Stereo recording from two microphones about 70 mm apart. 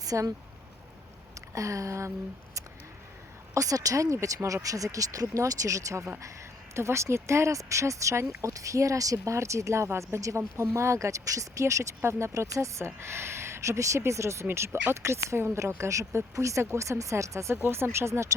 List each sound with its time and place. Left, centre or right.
0.0 s speech: right
1.5 s speech: right
3.5 s speech: right